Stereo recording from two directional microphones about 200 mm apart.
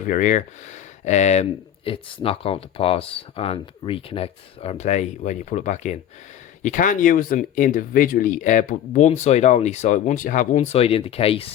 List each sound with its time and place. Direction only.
0.0 s speech: 40° left (ahead or behind)